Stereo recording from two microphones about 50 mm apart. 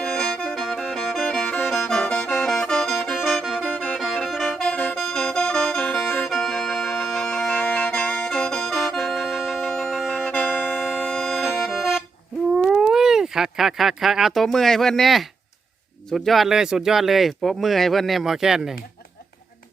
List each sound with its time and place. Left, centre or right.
0.0 s music: centre
0.5 s music: centre
3.2 s music: centre
3.6 s music: left
3.9 s music: centre
4.7 s music: left
4.9 s music: centre
10.2 s music: left
10.8 s music: centre
11.1 s accordion: centre
11.7 s music: centre
12.5 s cat: centre
14.3 s speech: centre
16.5 s speech: centre